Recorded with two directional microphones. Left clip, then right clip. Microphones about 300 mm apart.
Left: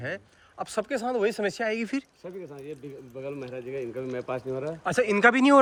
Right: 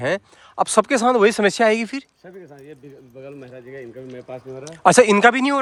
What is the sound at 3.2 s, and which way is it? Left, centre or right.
Speech, centre.